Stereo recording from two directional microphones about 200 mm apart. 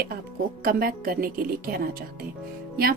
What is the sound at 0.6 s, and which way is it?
Speech, 45° right (ahead or behind).